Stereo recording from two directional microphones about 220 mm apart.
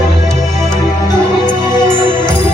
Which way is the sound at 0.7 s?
20° left (ahead or behind).